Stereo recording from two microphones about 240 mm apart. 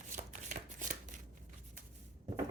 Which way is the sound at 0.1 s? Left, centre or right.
Right.